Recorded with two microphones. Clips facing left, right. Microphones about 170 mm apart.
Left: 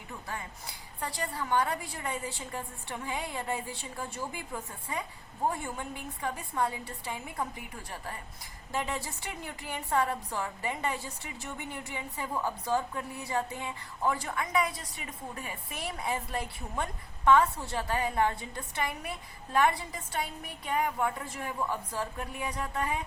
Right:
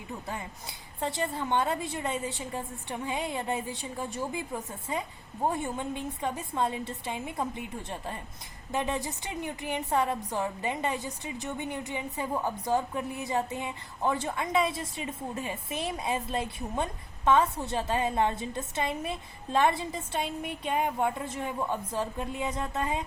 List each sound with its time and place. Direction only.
1.0 s a woman's voice: 20° right (ahead or behind)